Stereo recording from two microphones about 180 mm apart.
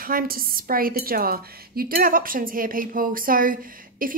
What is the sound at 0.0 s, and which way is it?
Speech, 55° right (ahead or behind).